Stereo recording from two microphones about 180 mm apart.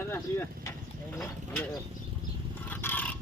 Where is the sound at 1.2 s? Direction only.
5° left (ahead or behind).